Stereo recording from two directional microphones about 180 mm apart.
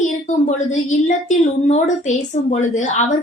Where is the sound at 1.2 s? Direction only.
45° left (ahead or behind).